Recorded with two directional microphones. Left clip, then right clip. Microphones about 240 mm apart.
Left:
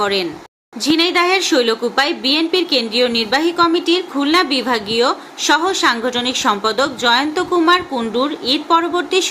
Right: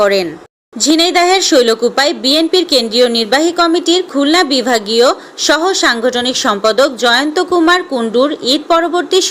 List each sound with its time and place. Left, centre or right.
0.0 s a woman's voice: centre